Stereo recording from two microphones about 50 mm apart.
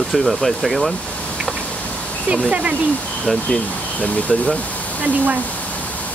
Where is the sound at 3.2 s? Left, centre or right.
Left.